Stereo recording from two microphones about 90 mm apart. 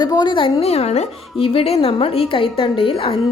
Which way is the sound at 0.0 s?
55° left (ahead or behind).